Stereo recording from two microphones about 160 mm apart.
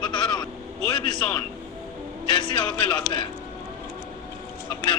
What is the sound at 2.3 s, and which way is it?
Speech, 30° left (ahead or behind).